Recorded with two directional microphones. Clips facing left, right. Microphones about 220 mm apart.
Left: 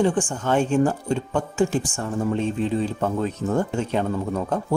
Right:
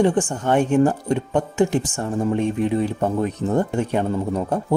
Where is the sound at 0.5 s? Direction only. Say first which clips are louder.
Right 2 dB; 20° right (ahead or behind).